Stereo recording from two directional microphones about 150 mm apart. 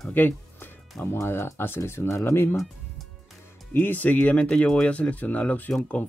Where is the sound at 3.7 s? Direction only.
10° left (ahead or behind).